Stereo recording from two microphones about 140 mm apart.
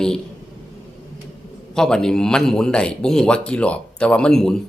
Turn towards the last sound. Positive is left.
turn(degrees=5)  # may be behind; listen again after turning